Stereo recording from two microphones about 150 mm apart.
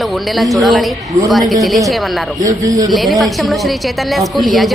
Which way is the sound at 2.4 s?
25° right (ahead or behind).